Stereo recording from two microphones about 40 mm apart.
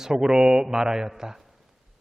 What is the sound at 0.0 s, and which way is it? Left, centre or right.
A man's voice, centre.